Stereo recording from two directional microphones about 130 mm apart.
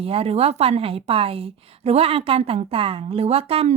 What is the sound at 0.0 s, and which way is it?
A woman's voice, 50° right (ahead or behind).